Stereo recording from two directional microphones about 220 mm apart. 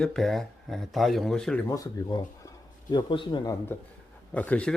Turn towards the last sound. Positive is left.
turn(degrees=5)  # may be behind; listen again after turning